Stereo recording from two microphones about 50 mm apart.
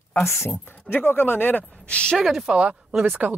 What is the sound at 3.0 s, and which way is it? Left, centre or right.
Speech, right.